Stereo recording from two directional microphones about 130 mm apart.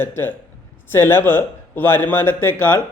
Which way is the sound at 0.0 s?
15° left (ahead or behind).